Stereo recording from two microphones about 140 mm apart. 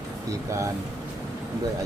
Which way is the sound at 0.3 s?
20° right (ahead or behind).